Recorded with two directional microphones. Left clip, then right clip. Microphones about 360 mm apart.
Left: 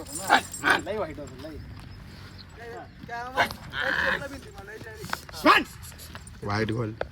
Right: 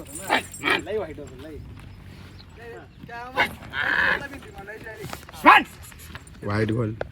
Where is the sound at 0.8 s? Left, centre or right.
Left.